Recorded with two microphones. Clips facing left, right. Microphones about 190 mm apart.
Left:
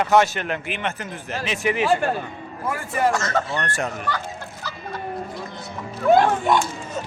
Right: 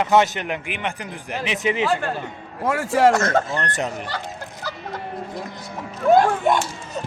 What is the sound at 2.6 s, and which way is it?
Speech, 80° right.